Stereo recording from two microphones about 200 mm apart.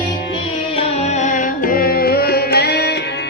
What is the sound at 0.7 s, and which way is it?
Music, 30° left (ahead or behind).